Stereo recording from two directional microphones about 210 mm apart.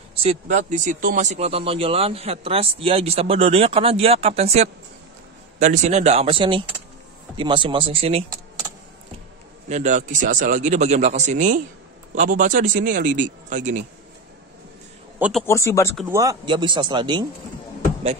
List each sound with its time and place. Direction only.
0.1 s speech: 30° right (ahead or behind)
9.7 s speech: 35° right (ahead or behind)
15.1 s a man's voice: 5° right (ahead or behind)
15.4 s speech: 15° left (ahead or behind)
16.1 s speech: 15° right (ahead or behind)